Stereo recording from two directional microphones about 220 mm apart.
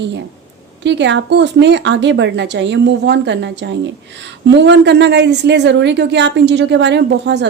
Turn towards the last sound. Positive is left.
turn(degrees=-50)  # may be behind; listen again after turning